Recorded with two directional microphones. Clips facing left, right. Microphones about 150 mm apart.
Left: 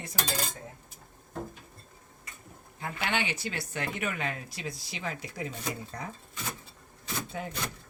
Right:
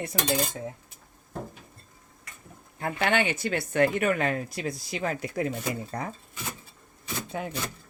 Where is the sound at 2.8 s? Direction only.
55° right (ahead or behind).